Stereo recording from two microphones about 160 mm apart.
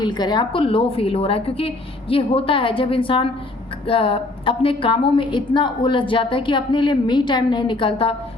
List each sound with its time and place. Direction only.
0.0 s a woman's voice: 25° left (ahead or behind)